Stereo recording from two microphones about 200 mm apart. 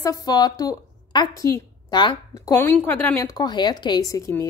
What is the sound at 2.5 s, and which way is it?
A woman's voice, 10° left (ahead or behind).